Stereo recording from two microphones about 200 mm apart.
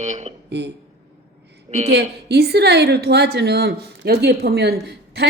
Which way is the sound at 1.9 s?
55° right (ahead or behind).